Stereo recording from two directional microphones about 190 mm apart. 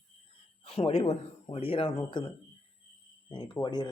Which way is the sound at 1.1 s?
30° left (ahead or behind).